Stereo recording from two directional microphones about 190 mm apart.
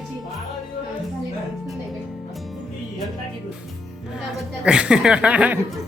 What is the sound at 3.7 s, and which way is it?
Speech, centre (ahead or behind).